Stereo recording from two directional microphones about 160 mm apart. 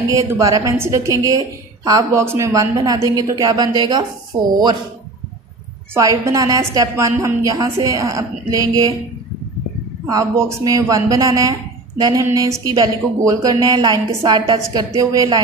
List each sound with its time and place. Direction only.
0.1 s a woman's voice: 20° right (ahead or behind)
5.9 s a woman's voice: 20° right (ahead or behind)
10.0 s a woman's voice: 20° right (ahead or behind)